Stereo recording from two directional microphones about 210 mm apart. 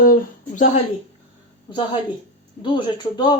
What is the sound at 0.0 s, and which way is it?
Speech, 40° left (ahead or behind).